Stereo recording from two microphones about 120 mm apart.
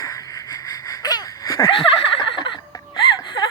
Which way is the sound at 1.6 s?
45° left (ahead or behind).